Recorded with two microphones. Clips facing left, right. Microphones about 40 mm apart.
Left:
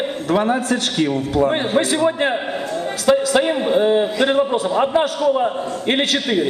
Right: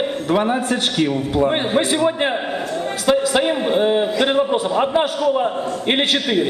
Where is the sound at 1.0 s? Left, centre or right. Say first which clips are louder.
Left 1 dB; centre.